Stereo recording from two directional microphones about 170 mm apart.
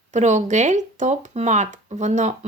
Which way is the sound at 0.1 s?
45° right (ahead or behind).